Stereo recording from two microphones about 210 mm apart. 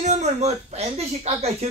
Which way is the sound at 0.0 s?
35° right (ahead or behind).